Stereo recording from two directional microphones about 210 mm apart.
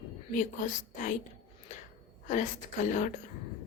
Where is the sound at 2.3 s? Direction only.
35° left (ahead or behind).